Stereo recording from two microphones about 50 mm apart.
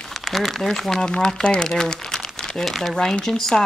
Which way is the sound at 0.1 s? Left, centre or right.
Centre.